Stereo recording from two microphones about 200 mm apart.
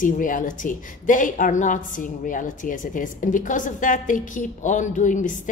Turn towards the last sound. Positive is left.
turn(degrees=40)  # may be behind; listen again after turning